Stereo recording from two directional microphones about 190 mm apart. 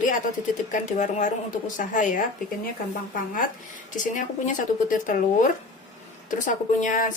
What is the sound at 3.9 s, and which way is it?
A woman's voice, 40° left (ahead or behind).